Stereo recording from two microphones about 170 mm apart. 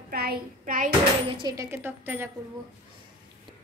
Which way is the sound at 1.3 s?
20° right (ahead or behind).